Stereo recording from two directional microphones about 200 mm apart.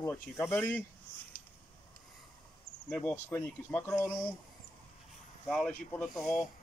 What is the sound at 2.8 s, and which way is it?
Speech, 5° left (ahead or behind).